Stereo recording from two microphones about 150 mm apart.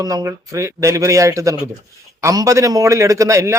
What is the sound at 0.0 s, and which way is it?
A man's voice, 25° right (ahead or behind).